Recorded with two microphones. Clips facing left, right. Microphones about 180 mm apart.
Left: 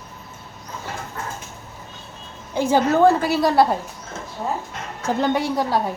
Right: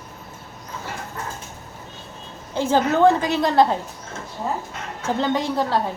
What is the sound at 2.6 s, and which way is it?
A woman's voice, 10° left (ahead or behind).